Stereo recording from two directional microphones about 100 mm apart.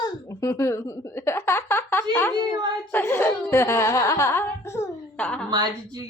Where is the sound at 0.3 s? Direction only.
35° left (ahead or behind).